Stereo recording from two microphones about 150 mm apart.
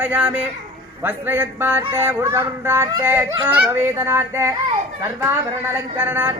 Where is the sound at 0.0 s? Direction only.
10° right (ahead or behind).